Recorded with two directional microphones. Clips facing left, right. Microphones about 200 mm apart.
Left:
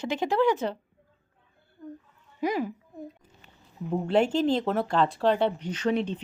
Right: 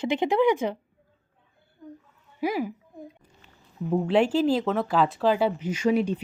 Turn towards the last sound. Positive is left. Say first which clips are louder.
# right 4 dB
turn(degrees=-10)  # may be behind; listen again after turning